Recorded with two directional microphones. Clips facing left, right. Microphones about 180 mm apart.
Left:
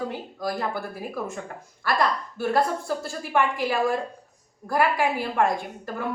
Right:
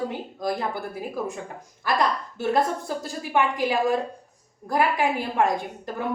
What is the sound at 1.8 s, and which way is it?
A woman's voice, 20° right (ahead or behind).